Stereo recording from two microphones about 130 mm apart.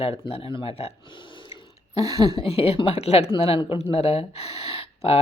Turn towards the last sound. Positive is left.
turn(degrees=50)  # may be behind; listen again after turning